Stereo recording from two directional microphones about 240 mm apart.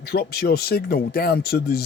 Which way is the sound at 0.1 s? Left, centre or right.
Left.